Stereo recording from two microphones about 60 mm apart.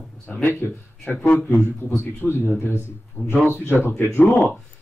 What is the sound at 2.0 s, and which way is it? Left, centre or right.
Speech, left.